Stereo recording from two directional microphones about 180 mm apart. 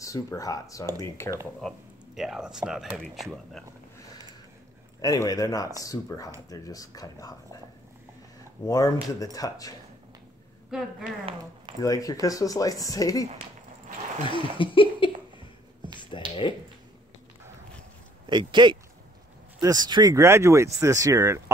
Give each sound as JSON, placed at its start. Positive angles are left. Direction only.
{"t": 0.0, "sound": "speech", "side_deg": 20}
{"t": 1.6, "sound": "speech", "side_deg": 0}
{"t": 5.0, "sound": "speech", "side_deg": 20}
{"t": 8.6, "sound": "speech", "side_deg": 20}
{"t": 10.7, "sound": "speech", "side_deg": 0}
{"t": 11.8, "sound": "speech", "side_deg": 20}
{"t": 16.1, "sound": "a sound", "side_deg": 25}
{"t": 18.3, "sound": "speech", "side_deg": -25}